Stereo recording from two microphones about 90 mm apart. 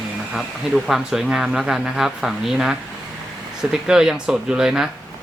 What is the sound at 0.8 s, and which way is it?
Speech, 5° right (ahead or behind).